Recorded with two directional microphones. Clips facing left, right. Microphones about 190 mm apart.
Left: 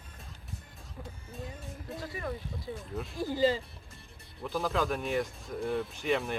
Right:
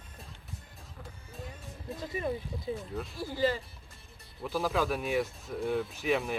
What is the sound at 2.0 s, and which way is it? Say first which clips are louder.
Speech: right 5 dB; 20° right (ahead or behind).